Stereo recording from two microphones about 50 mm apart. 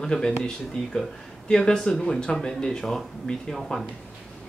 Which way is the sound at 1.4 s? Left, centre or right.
Centre.